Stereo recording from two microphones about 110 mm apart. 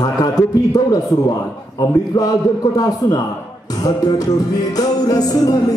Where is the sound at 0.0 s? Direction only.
35° left (ahead or behind).